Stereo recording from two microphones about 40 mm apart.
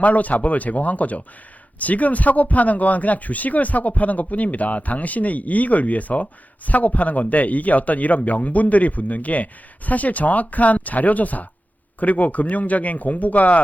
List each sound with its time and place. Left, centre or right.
0.0 s a man's voice: left